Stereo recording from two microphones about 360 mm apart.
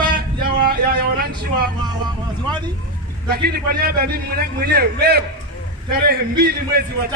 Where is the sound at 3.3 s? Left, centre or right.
Right.